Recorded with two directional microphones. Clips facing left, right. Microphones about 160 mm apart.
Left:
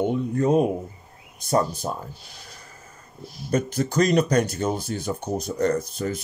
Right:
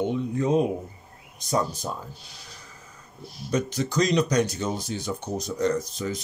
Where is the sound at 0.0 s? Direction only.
50° left (ahead or behind).